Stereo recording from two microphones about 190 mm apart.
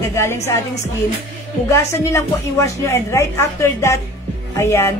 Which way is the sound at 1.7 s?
15° left (ahead or behind).